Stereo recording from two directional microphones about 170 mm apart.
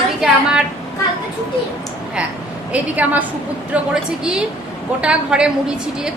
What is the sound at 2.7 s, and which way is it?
A woman's voice, 10° right (ahead or behind).